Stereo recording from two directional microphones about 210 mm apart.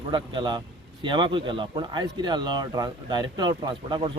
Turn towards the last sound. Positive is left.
turn(degrees=-20)  # may be behind; listen again after turning